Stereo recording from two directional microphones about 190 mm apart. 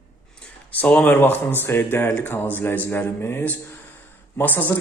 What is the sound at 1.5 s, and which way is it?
Speech, 10° left (ahead or behind).